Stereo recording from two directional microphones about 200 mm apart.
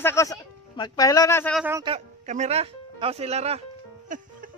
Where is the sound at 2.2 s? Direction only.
35° right (ahead or behind).